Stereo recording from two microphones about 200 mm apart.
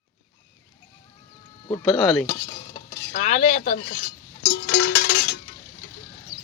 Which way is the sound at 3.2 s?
35° left (ahead or behind).